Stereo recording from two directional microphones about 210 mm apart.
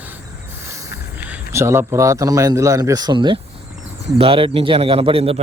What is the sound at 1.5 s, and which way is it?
A man's voice, 10° right (ahead or behind).